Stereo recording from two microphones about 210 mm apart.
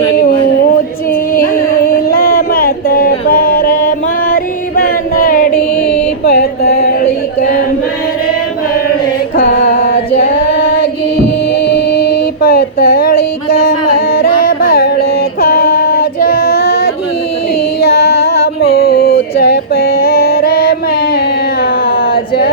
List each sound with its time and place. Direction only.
1.3 s music: 40° left (ahead or behind)
4.8 s chant: 45° left (ahead or behind)
6.2 s music: 50° left (ahead or behind)
9.3 s music: 45° left (ahead or behind)
10.2 s female singing: 45° left (ahead or behind)
11.5 s mantra: 50° left (ahead or behind)
17.9 s a sound: 50° left (ahead or behind)